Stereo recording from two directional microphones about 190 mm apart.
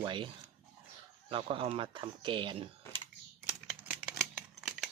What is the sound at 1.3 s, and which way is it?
Speech, 25° right (ahead or behind).